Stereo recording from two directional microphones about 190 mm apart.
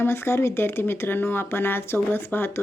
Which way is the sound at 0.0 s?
15° left (ahead or behind).